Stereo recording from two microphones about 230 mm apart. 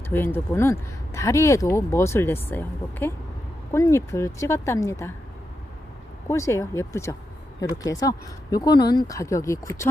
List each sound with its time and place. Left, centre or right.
0.1 s speech: centre
6.2 s speech: centre